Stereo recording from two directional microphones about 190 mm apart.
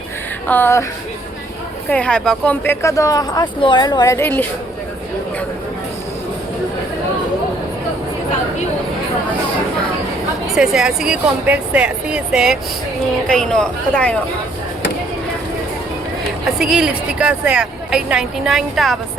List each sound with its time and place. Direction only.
0.4 s speech: 10° left (ahead or behind)
1.9 s speech: 5° left (ahead or behind)
10.4 s speech: centre (ahead or behind)
16.6 s speech: 5° right (ahead or behind)